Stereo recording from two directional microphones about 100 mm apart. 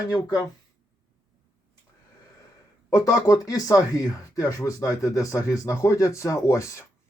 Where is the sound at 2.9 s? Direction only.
35° left (ahead or behind).